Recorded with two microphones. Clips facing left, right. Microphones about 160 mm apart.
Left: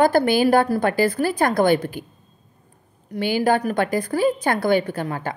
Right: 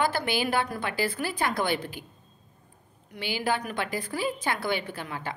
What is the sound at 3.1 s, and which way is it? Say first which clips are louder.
A woman's voice: left 10 dB; 45° left (ahead or behind).